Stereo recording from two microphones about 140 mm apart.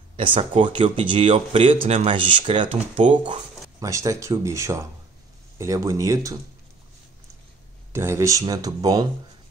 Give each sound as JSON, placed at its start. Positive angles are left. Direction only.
{"t": 0.1, "sound": "a sound", "side_deg": -40}
{"t": 0.6, "sound": "speech", "side_deg": -35}
{"t": 3.8, "sound": "speech", "side_deg": -25}
{"t": 7.9, "sound": "speech", "side_deg": -20}